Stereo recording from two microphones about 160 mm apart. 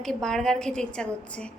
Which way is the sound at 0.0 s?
5° left (ahead or behind).